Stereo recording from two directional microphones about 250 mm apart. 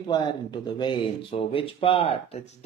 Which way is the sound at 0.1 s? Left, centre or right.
Centre.